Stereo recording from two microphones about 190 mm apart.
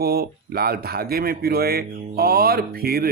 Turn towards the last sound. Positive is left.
turn(degrees=-50)  # may be behind; listen again after turning